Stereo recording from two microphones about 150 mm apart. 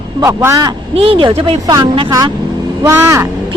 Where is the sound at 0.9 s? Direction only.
35° right (ahead or behind).